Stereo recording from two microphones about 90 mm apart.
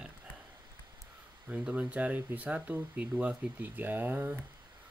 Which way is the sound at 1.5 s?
15° right (ahead or behind).